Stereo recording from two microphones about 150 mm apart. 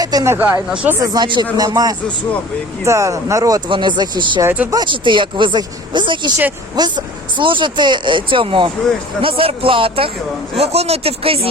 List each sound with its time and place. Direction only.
0.0 s a sound: 25° right (ahead or behind)
0.3 s speech: 10° right (ahead or behind)
0.9 s speech: 25° right (ahead or behind)
4.4 s speech: 10° right (ahead or behind)
4.7 s speech: 30° right (ahead or behind)